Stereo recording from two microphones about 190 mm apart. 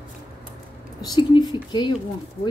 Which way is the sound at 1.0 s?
20° left (ahead or behind).